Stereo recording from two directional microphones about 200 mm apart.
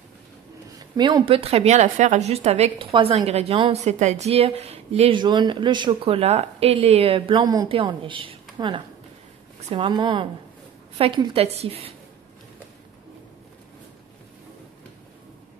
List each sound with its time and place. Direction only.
0.7 s speech: 20° right (ahead or behind)